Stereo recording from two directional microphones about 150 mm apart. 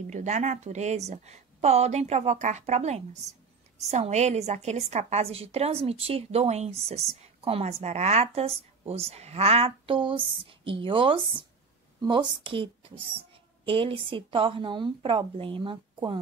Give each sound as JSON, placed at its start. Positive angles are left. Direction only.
{"t": 0.0, "sound": "a woman's voice", "side_deg": -50}